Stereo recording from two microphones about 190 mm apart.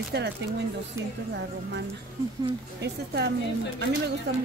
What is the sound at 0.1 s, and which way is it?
Speech, 55° right (ahead or behind).